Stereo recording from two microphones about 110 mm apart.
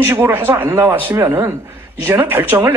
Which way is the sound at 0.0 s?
20° right (ahead or behind).